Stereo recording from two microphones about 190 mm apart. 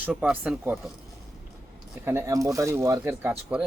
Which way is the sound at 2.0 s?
10° right (ahead or behind).